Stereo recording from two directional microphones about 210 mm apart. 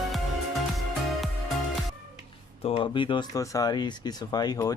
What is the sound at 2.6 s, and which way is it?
Speech, 25° left (ahead or behind).